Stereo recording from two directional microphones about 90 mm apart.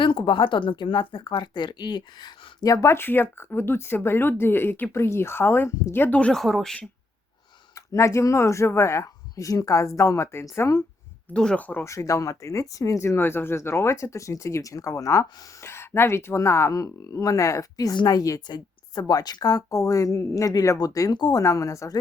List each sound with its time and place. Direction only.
0.0 s speech: 65° left (ahead or behind); by 6.4 s 15° left (ahead or behind)
6.4 s speech: 5° left (ahead or behind)
7.8 s speech: 35° left (ahead or behind)
11.3 s speech: 10° left (ahead or behind)
11.9 s a woman's voice: 35° left (ahead or behind)
21.4 s speech: 35° left (ahead or behind)